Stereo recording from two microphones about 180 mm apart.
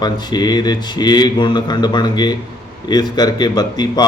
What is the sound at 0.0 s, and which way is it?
A man's voice, 25° left (ahead or behind).